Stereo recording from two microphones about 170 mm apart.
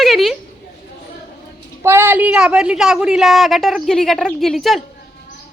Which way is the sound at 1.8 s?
15° right (ahead or behind).